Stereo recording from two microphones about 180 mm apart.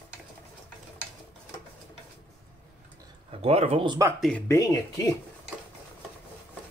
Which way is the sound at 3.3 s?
35° right (ahead or behind).